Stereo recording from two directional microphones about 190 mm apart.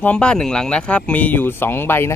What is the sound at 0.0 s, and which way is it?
Speech, 5° left (ahead or behind).